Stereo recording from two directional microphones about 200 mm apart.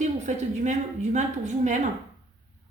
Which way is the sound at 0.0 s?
35° right (ahead or behind).